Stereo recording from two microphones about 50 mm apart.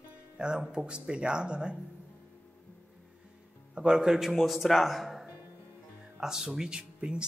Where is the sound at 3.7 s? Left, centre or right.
Centre.